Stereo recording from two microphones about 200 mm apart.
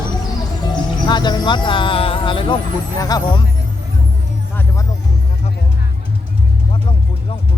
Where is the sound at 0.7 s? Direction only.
20° left (ahead or behind).